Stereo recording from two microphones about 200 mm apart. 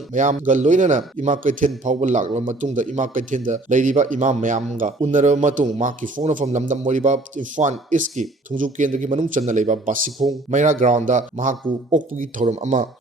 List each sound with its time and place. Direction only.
0.1 s a man's voice: 40° right (ahead or behind)